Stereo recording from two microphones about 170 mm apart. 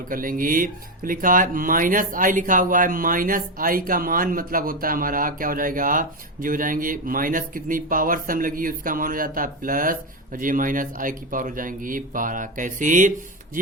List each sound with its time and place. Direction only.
0.1 s speech: 55° right (ahead or behind)